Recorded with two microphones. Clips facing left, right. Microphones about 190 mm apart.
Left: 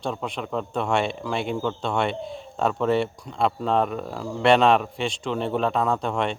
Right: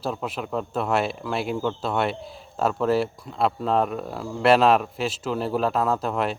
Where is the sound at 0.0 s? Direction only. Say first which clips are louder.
Even; 5° right (ahead or behind).